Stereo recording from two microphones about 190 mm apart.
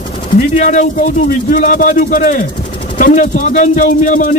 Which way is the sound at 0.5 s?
40° left (ahead or behind).